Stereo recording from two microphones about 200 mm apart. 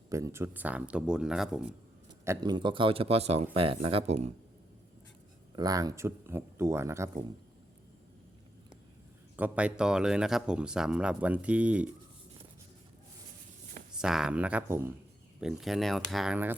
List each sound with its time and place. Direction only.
0.1 s speech: 15° right (ahead or behind)
2.2 s speech: 15° right (ahead or behind); by 4.3 s 30° right (ahead or behind)
5.5 s speech: 20° right (ahead or behind)
9.3 s speech: 5° right (ahead or behind)
13.9 s speech: 5° right (ahead or behind)